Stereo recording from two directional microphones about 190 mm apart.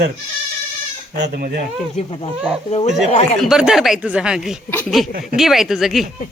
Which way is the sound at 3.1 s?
35° left (ahead or behind).